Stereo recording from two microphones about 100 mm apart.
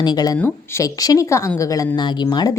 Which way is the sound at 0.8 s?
35° left (ahead or behind).